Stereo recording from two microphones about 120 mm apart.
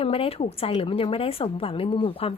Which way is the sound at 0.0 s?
55° left (ahead or behind).